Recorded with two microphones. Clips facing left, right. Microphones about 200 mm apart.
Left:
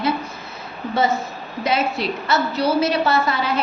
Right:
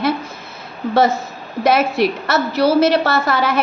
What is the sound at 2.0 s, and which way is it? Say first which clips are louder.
A woman's voice: right 4 dB; 85° right.